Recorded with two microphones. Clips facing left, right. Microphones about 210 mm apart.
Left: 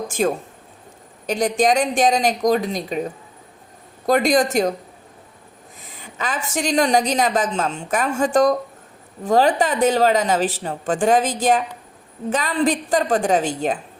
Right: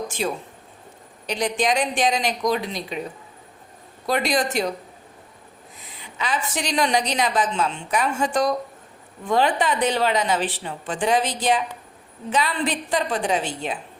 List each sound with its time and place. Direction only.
0.1 s a woman's voice: 50° left (ahead or behind)
5.8 s a woman's voice: 45° left (ahead or behind)